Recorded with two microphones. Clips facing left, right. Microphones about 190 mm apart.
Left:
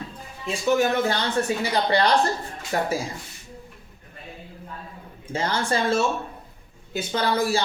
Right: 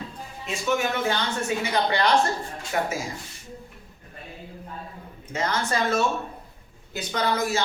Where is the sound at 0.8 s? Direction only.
35° left (ahead or behind).